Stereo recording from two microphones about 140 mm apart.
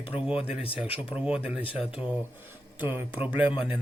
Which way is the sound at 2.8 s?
15° right (ahead or behind).